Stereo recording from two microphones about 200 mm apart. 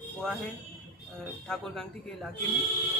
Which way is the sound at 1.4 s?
Centre (ahead or behind).